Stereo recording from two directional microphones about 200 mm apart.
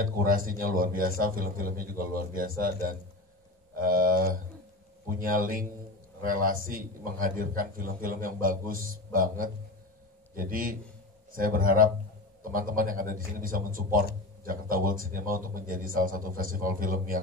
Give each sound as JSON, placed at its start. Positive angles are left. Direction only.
{"t": 0.0, "sound": "a man's voice", "side_deg": -45}
{"t": 3.8, "sound": "a man's voice", "side_deg": -45}